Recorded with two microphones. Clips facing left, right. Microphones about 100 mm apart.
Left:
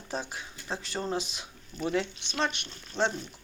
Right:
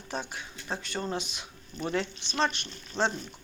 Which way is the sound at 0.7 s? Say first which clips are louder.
Left 1 dB; centre (ahead or behind).